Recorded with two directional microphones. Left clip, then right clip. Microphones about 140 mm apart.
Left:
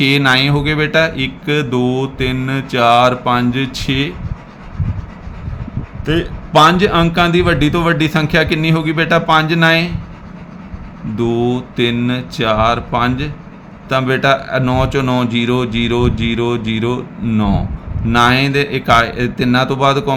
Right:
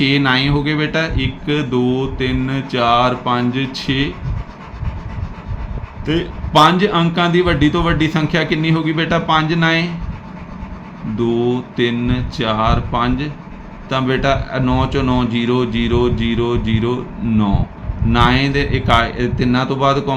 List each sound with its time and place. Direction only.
0.0 s speech: 45° left (ahead or behind)
6.1 s speech: 40° left (ahead or behind)
11.2 s speech: 45° left (ahead or behind)